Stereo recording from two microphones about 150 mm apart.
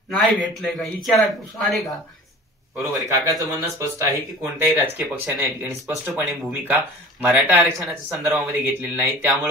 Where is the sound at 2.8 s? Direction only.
20° right (ahead or behind).